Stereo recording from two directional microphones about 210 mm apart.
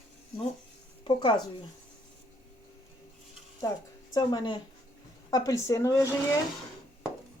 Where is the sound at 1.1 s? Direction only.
25° left (ahead or behind).